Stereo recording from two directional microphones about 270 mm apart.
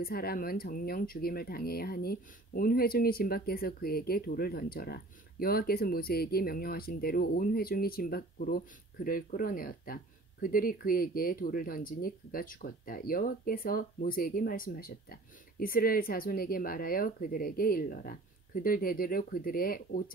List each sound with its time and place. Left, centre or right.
0.0 s speech: left